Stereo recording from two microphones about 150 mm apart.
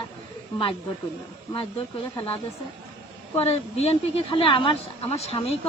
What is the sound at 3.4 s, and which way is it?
Speech, 40° left (ahead or behind).